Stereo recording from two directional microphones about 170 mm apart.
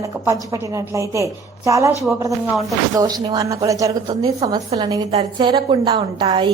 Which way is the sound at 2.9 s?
25° right (ahead or behind).